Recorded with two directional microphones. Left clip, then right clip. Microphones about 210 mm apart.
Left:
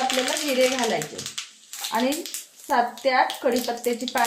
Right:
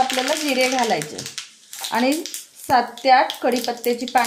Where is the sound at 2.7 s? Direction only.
55° right (ahead or behind).